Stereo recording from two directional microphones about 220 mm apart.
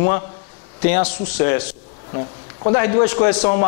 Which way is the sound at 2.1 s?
30° left (ahead or behind).